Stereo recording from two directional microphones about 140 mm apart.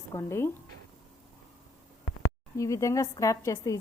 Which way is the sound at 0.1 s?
20° left (ahead or behind).